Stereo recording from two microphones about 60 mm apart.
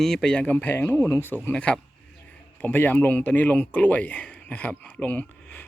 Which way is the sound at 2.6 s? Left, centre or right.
Left.